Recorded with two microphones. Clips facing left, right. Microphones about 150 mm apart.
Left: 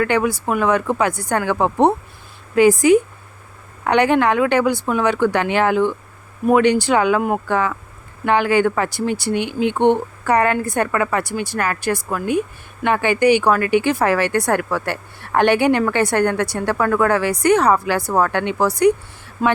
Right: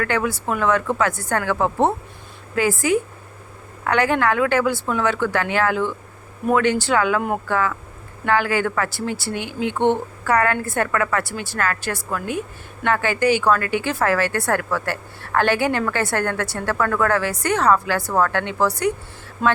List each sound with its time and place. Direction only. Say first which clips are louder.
0.0 s a woman's voice: left 4 dB; 15° left (ahead or behind)